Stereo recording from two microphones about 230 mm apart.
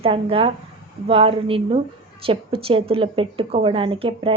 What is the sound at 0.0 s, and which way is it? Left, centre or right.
A woman's voice, right.